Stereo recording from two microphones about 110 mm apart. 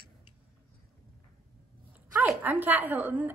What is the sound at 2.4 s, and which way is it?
Speech, 15° right (ahead or behind).